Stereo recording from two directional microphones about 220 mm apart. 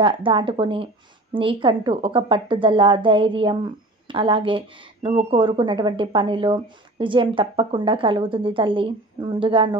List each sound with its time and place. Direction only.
0.0 s a woman's voice: 25° right (ahead or behind)